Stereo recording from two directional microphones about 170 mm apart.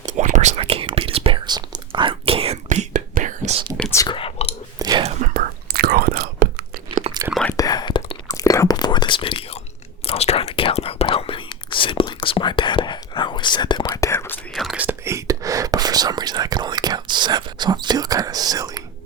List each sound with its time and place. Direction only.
0.0 s whispering: 45° right (ahead or behind)
0.5 s whispering: 35° right (ahead or behind)
3.9 s whispering: 25° left (ahead or behind)
4.8 s whispering: 25° right (ahead or behind)
5.0 s whispering: 50° right (ahead or behind); by 6.7 s 70° right (ahead or behind)
7.1 s whispering: 35° right (ahead or behind)
7.5 s whispering: 20° left (ahead or behind)
13.8 s whispering: 15° left (ahead or behind)
14.5 s whispering: centre (ahead or behind); by 18.8 s 20° right (ahead or behind)